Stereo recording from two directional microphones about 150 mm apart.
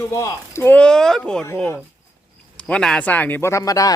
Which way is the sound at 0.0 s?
20° left (ahead or behind).